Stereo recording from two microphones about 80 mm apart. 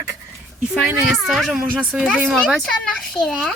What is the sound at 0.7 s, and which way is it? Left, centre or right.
Speech, centre.